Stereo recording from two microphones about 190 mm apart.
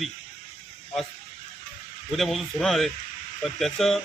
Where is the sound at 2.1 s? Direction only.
Centre (ahead or behind).